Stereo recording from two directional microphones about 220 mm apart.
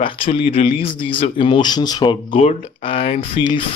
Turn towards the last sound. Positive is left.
turn(degrees=25)  # may be behind; listen again after turning